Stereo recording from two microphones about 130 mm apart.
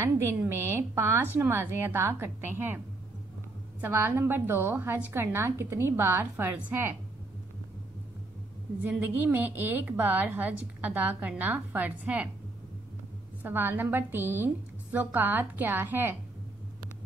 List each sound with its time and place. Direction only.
0.0 s a woman's voice: 20° right (ahead or behind)
3.8 s a woman's voice: 15° right (ahead or behind)
8.8 s a woman's voice: 15° right (ahead or behind)
13.4 s a woman's voice: 15° right (ahead or behind)